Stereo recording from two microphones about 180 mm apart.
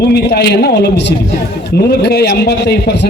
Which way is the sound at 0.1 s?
60° left (ahead or behind).